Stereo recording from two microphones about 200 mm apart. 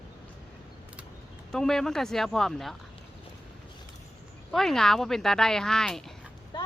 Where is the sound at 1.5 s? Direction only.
5° left (ahead or behind).